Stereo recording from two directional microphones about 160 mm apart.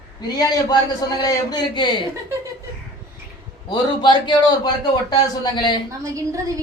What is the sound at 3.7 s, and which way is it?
Speech, 30° left (ahead or behind).